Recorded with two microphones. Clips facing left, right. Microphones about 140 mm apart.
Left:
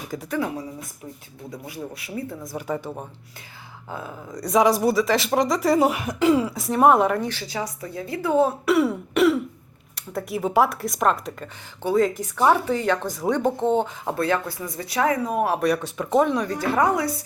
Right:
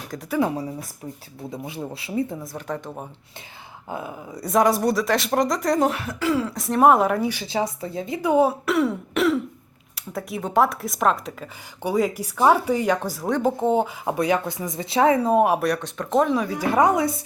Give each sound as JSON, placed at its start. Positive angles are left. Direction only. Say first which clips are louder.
{"t": 0.1, "sound": "speech", "louder": "even", "side_deg": 0}
{"t": 0.4, "sound": "a woman's voice", "louder": "right 4 dB", "side_deg": -30}
{"t": 2.4, "sound": "speech", "louder": "left 2 dB", "side_deg": 5}
{"t": 3.8, "sound": "speech", "louder": "right 2 dB", "side_deg": -15}
{"t": 6.5, "sound": "speech", "louder": "right 1 dB", "side_deg": 0}
{"t": 7.4, "sound": "a woman's voice", "louder": "right 5 dB", "side_deg": -25}
{"t": 8.6, "sound": "speech", "louder": "left 2 dB", "side_deg": 0}
{"t": 11.8, "sound": "speech", "louder": "left 2 dB", "side_deg": -10}
{"t": 15.6, "sound": "speech", "louder": "left 2 dB", "side_deg": 5}
{"t": 16.7, "sound": "a woman's voice", "louder": "right 3 dB", "side_deg": -20}